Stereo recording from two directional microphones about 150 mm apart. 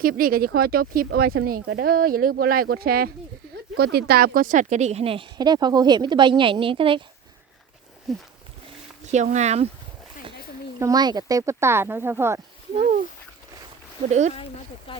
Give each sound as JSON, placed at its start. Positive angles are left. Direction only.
{"t": 0.0, "sound": "speech", "side_deg": -70}
{"t": 8.1, "sound": "a sound", "side_deg": 0}
{"t": 9.0, "sound": "speech", "side_deg": -50}
{"t": 10.8, "sound": "speech", "side_deg": -25}
{"t": 14.1, "sound": "speech", "side_deg": -50}
{"t": 14.9, "sound": "speech", "side_deg": 35}